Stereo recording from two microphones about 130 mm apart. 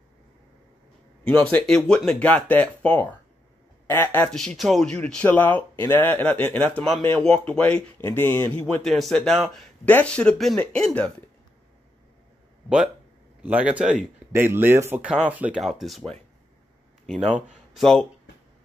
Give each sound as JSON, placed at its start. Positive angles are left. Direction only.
{"t": 1.5, "sound": "speech", "side_deg": 5}
{"t": 4.3, "sound": "speech", "side_deg": 5}
{"t": 8.8, "sound": "speech", "side_deg": 0}
{"t": 12.6, "sound": "speech", "side_deg": -5}
{"t": 15.6, "sound": "speech", "side_deg": 0}
{"t": 17.7, "sound": "speech", "side_deg": 5}